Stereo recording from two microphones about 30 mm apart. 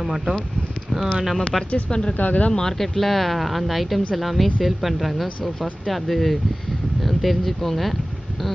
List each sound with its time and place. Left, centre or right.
0.0 s speech: centre
1.9 s speech: left
2.1 s speech: left
2.5 s speech: centre
3.0 s speech: centre